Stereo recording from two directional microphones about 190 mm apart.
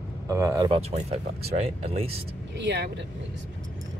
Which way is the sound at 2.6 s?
65° right (ahead or behind).